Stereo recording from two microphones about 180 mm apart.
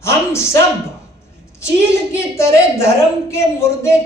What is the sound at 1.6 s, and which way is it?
A woman's voice, 15° left (ahead or behind).